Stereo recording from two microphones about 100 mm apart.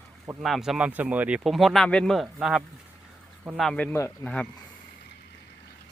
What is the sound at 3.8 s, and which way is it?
Speech, 25° left (ahead or behind).